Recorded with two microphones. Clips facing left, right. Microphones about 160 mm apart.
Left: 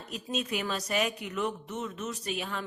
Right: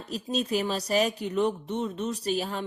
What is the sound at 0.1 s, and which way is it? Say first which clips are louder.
Speech: right 5 dB; 35° right (ahead or behind).